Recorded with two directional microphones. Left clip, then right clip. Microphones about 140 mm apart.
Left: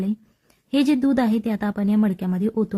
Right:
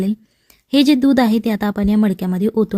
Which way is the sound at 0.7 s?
35° right (ahead or behind).